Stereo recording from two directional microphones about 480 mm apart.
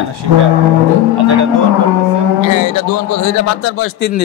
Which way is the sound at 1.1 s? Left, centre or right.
Right.